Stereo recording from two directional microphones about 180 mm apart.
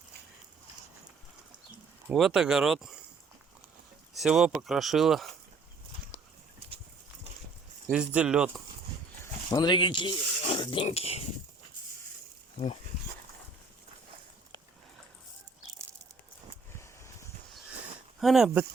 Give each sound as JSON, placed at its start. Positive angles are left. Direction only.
{"t": 2.0, "sound": "speech", "side_deg": 0}
{"t": 4.2, "sound": "speech", "side_deg": -5}
{"t": 7.9, "sound": "speech", "side_deg": -5}
{"t": 9.5, "sound": "speech", "side_deg": 25}
{"t": 16.7, "sound": "a sound", "side_deg": 15}
{"t": 18.2, "sound": "speech", "side_deg": 0}